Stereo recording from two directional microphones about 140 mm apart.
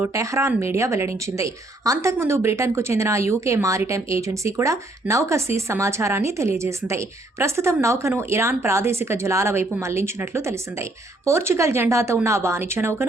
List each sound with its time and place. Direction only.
0.0 s a woman's voice: 20° right (ahead or behind)